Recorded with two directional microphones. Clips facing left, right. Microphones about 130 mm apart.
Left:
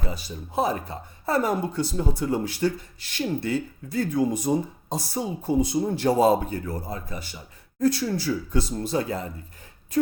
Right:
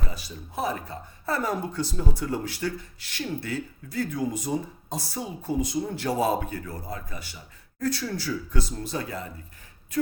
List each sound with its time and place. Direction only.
0.1 s speech: 25° left (ahead or behind)